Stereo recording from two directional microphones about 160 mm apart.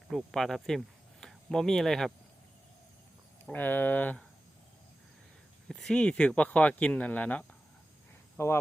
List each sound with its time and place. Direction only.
0.1 s speech: centre (ahead or behind)
3.5 s speech: 10° left (ahead or behind)
5.6 s speech: 5° left (ahead or behind)